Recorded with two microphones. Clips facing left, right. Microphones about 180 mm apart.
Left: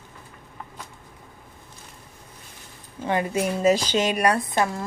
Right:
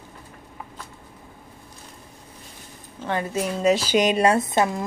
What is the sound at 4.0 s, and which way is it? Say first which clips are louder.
Speech: right 3 dB; 20° right (ahead or behind).